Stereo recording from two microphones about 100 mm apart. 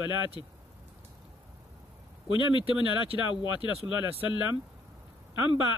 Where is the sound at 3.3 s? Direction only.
55° left (ahead or behind).